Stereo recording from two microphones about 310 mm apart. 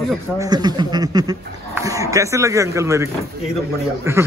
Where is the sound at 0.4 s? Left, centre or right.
Centre.